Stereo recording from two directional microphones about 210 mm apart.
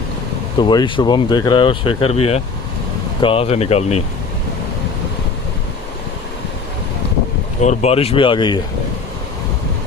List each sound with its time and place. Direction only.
0.6 s speech: 20° left (ahead or behind)
7.6 s speech: 35° left (ahead or behind)